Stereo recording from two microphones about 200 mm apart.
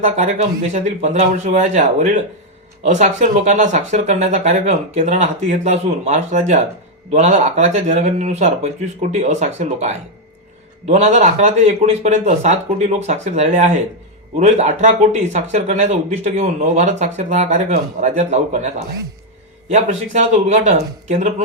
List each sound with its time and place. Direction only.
0.7 s speech: 35° right (ahead or behind)
19.7 s speech: 35° right (ahead or behind)